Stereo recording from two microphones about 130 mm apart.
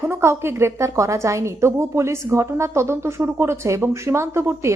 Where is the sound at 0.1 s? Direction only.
20° right (ahead or behind).